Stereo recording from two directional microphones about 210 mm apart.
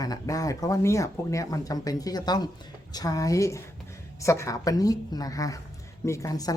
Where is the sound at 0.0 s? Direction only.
15° left (ahead or behind).